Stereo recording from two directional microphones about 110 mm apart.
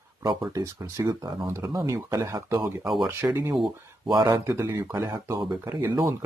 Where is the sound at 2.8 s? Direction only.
5° right (ahead or behind).